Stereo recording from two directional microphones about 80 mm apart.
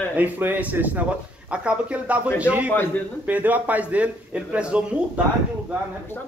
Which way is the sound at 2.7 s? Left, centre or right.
Left.